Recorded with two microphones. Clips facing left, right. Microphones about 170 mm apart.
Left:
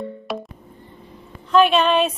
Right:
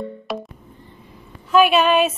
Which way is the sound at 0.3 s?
Centre (ahead or behind).